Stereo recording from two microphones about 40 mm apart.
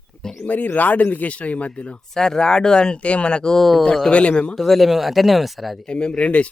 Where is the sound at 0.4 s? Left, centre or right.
Left.